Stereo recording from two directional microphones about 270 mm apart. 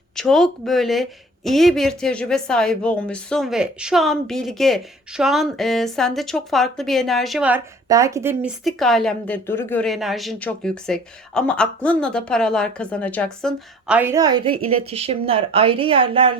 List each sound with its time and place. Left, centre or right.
0.2 s a woman's voice: centre